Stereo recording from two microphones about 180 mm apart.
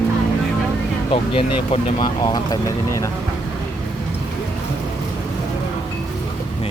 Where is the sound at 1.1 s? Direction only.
30° left (ahead or behind).